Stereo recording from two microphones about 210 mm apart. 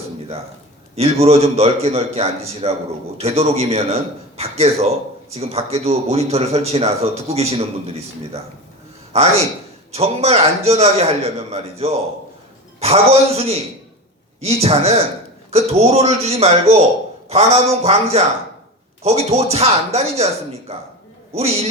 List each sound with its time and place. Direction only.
0.9 s speech: 30° right (ahead or behind)
9.9 s speech: 30° right (ahead or behind)
12.8 s speech: 30° right (ahead or behind)